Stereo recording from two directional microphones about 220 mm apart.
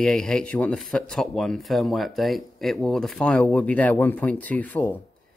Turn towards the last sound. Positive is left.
turn(degrees=5)  # may be behind; listen again after turning